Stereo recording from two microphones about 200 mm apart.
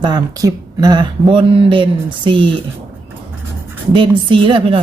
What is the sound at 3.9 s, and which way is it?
Speech, 25° right (ahead or behind).